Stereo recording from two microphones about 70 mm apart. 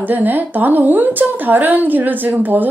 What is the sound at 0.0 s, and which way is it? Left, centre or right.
A woman's voice, right.